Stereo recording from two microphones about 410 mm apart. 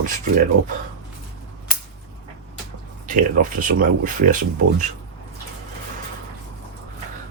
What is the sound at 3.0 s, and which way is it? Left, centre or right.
Speech, centre.